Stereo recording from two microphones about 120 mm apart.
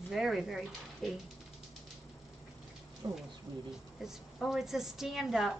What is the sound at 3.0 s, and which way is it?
Speech, 30° right (ahead or behind).